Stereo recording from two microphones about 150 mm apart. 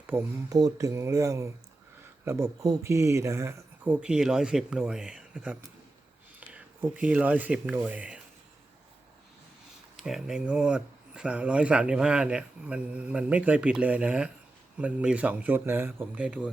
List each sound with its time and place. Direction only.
0.1 s speech: 15° right (ahead or behind)
0.5 s speech: 25° right (ahead or behind)
3.8 s speech: 5° right (ahead or behind)
10.0 s speech: 5° right (ahead or behind)